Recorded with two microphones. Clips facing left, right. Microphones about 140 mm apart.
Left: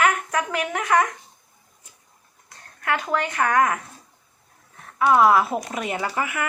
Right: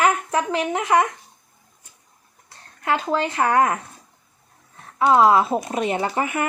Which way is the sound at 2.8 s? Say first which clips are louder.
Right 2 dB; 25° right (ahead or behind).